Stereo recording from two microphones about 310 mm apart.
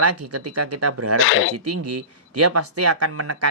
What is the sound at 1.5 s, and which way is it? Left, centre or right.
Speech, right.